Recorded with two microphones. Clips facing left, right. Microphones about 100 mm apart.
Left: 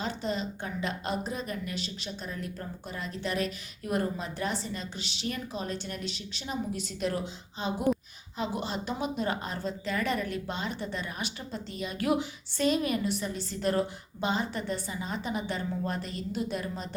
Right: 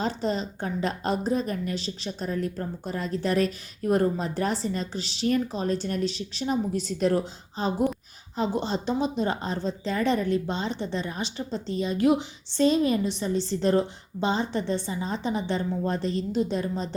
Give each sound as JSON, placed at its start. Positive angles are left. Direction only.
{"t": 0.0, "sound": "a woman's voice", "side_deg": -35}